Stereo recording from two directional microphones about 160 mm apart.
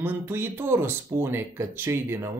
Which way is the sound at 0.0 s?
15° right (ahead or behind).